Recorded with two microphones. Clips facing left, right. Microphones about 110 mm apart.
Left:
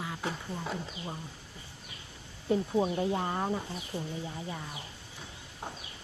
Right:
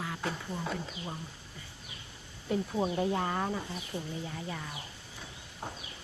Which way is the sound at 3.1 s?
25° left (ahead or behind).